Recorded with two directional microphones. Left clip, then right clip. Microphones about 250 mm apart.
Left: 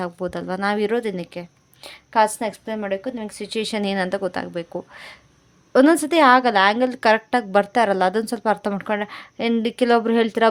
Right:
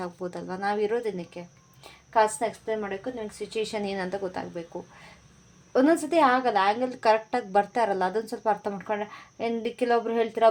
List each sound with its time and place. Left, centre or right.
0.0 s a woman's voice: left